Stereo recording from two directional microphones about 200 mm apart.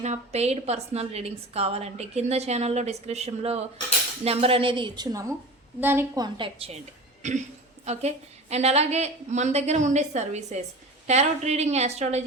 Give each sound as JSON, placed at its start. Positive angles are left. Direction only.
{"t": 0.0, "sound": "a woman's voice", "side_deg": -35}
{"t": 5.8, "sound": "a woman's voice", "side_deg": -10}